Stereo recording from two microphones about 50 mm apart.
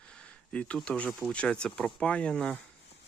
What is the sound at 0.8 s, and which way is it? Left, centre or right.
Speech, left.